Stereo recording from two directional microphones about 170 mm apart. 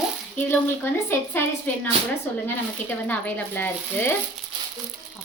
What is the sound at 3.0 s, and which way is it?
A woman's voice, 10° left (ahead or behind).